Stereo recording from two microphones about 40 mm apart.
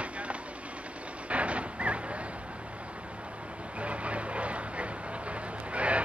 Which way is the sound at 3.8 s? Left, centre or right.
Right.